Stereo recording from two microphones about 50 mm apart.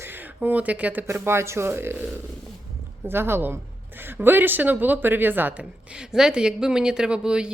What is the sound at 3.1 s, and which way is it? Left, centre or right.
Speech, right.